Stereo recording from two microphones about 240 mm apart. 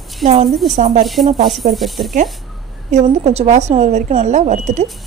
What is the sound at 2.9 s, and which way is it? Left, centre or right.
Speech, right.